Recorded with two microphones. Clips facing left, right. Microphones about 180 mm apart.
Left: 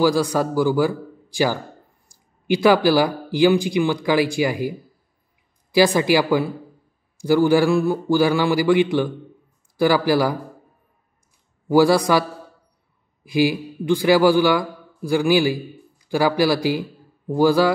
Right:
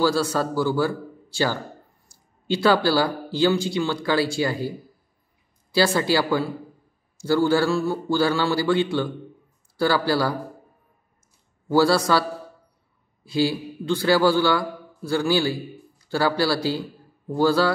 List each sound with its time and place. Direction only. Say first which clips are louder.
0.0 s a man's voice: left 3 dB; 15° left (ahead or behind)
11.6 s a man's voice: left 4 dB; 15° left (ahead or behind)